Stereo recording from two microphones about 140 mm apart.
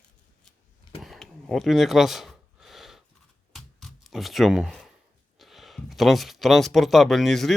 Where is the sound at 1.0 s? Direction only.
Centre (ahead or behind).